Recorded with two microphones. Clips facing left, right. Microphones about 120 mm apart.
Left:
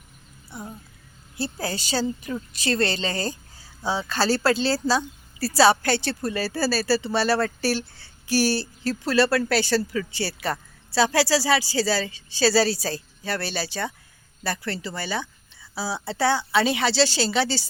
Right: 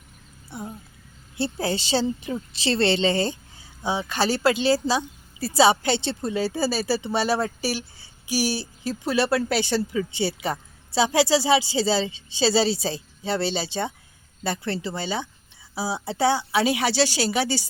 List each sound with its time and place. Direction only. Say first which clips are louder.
0.5 s a woman's voice: right 2 dB; 25° right (ahead or behind)